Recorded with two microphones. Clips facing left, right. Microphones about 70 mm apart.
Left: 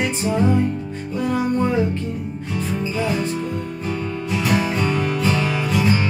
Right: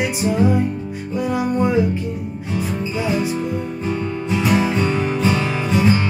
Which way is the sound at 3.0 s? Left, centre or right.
Centre.